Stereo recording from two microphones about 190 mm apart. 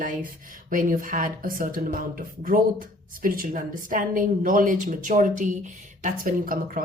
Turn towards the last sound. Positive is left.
turn(degrees=-50)  # may be behind; listen again after turning